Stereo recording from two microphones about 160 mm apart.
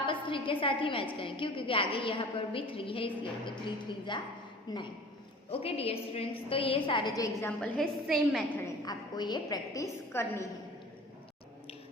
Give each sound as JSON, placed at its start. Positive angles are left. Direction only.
{"t": 0.0, "sound": "a woman's voice", "side_deg": 30}
{"t": 5.5, "sound": "a woman's voice", "side_deg": 40}
{"t": 7.4, "sound": "a woman's voice", "side_deg": 5}
{"t": 8.6, "sound": "a woman's voice", "side_deg": 25}